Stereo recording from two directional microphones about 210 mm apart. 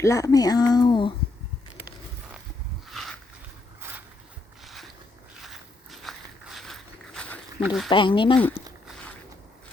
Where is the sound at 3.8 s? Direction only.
10° right (ahead or behind).